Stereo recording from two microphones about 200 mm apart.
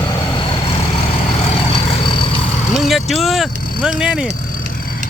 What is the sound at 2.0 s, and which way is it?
Vehicle, 25° left (ahead or behind).